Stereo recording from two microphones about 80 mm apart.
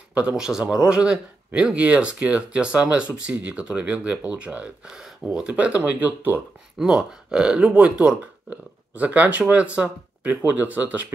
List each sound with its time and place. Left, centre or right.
0.1 s speech: centre
6.8 s speech: centre